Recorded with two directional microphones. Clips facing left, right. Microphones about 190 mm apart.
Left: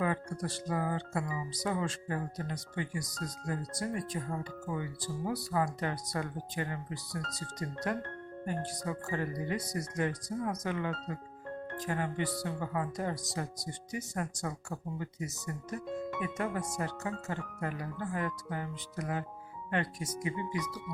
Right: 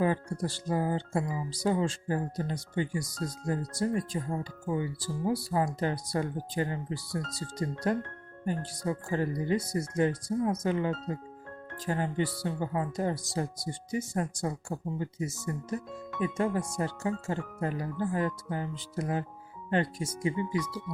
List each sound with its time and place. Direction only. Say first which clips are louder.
0.0 s speech: right 4 dB; 30° right (ahead or behind)